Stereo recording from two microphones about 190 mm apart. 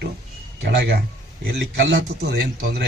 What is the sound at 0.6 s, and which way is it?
A man's voice, 60° right (ahead or behind).